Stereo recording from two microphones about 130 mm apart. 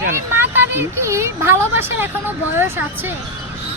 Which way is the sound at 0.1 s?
20° right (ahead or behind).